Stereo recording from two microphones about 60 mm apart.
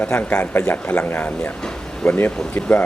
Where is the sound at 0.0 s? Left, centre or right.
Left.